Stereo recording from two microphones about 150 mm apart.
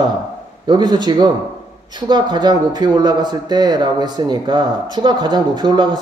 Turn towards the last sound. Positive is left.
turn(degrees=-30)  # may be behind; listen again after turning